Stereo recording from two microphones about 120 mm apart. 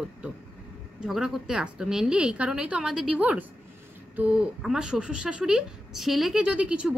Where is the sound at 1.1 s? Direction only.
5° right (ahead or behind).